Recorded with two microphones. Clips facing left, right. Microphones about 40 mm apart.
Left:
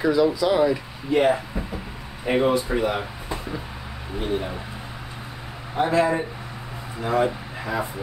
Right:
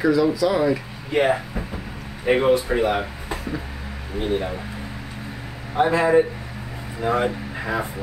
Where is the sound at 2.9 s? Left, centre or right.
Centre.